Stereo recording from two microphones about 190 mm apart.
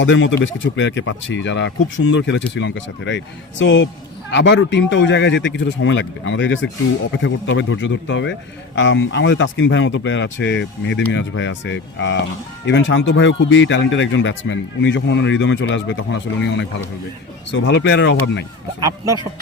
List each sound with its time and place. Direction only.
0.0 s a man's voice: 75° left (ahead or behind)
17.5 s a man's voice: 75° left (ahead or behind)
18.8 s speech: 20° right (ahead or behind)